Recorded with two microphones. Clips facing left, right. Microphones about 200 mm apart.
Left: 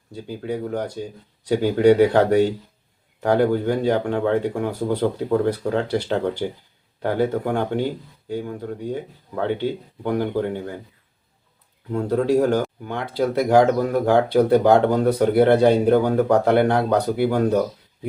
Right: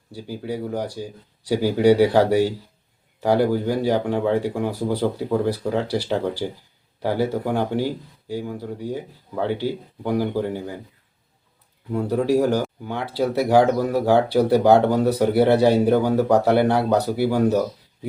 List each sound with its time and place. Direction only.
0.3 s speech: 10° right (ahead or behind)
11.9 s speech: 10° right (ahead or behind)